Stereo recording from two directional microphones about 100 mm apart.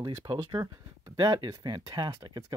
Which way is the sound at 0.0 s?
45° right (ahead or behind).